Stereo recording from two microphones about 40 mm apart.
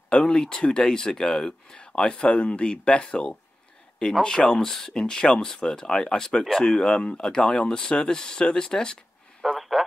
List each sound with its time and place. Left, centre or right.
0.1 s speech: left
4.5 s speech: centre
9.4 s a sound: centre